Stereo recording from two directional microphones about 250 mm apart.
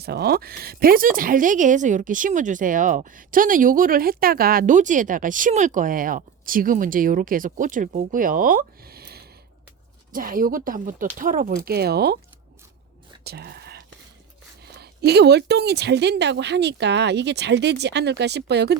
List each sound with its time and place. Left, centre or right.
0.0 s speech: right
13.2 s whispering: right
14.6 s speech: right